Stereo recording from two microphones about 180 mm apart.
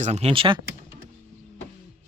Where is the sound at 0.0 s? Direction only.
35° right (ahead or behind).